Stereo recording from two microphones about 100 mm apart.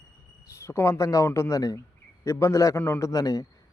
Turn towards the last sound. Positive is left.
turn(degrees=40)  # may be behind; listen again after turning